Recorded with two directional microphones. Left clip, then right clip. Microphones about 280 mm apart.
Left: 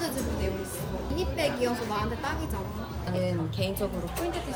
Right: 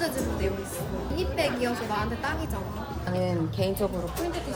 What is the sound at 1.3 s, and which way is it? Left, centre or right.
Speech, right.